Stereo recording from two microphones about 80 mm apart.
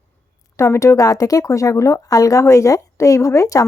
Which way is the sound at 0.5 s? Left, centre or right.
Left.